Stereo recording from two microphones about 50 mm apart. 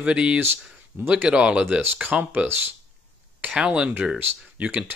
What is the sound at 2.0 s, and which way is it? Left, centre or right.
Speech, right.